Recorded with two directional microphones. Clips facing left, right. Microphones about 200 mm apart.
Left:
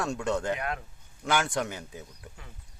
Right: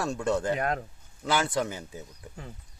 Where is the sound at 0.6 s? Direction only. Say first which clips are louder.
Right 5 dB; 40° right (ahead or behind).